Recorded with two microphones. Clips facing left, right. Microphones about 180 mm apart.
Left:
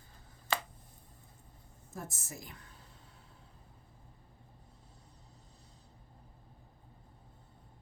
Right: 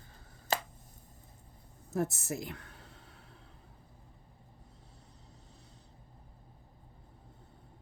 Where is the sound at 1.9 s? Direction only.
70° right (ahead or behind).